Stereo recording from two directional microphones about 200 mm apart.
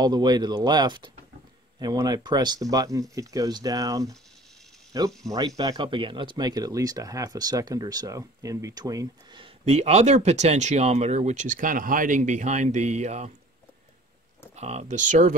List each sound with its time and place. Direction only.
0.0 s speech: 20° right (ahead or behind)
14.5 s speech: 35° right (ahead or behind)